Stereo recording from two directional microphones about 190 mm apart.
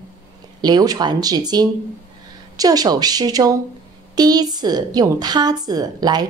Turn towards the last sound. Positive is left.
turn(degrees=-20)  # may be behind; listen again after turning